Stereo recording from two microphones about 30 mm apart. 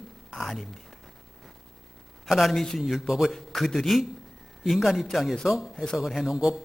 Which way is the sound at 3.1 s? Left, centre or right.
Centre.